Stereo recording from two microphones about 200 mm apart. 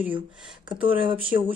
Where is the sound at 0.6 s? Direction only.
25° right (ahead or behind).